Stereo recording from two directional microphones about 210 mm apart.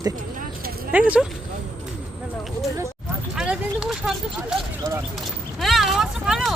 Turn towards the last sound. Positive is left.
turn(degrees=0)  # may be behind; listen again after turning